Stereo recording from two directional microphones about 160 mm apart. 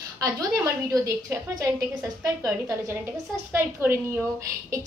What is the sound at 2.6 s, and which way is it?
A woman's voice, 15° right (ahead or behind).